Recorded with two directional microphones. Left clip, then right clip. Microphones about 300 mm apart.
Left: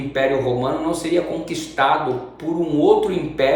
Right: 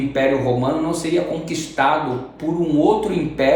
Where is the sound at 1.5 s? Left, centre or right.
Centre.